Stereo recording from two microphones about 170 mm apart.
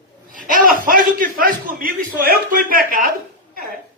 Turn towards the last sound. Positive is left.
turn(degrees=-55)  # may be behind; listen again after turning